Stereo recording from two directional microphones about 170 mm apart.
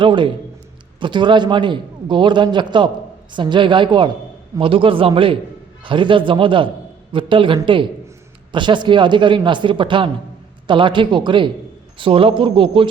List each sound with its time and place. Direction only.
0.0 s a man's voice: 30° right (ahead or behind)